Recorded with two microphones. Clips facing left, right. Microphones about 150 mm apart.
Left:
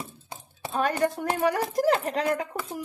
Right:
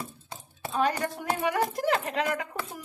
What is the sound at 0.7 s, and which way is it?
Speech, 45° left (ahead or behind).